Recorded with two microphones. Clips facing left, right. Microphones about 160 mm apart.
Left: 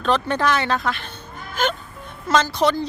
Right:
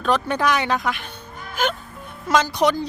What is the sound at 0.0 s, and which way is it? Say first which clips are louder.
Speech: even; 10° right (ahead or behind).